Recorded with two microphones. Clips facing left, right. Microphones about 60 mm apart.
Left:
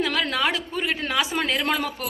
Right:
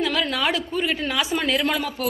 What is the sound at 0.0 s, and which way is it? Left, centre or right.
A man's voice, left.